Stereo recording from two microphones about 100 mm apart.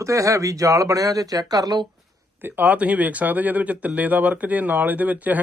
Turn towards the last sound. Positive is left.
turn(degrees=-15)  # may be behind; listen again after turning